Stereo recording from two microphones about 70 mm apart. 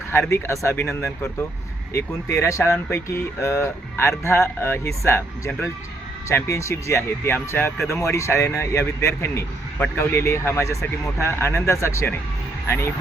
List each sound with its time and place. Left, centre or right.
0.1 s speech: left
6.5 s speech: left
7.3 s speech: left
8.0 s speech: left
9.7 s speech: left
10.0 s speech: left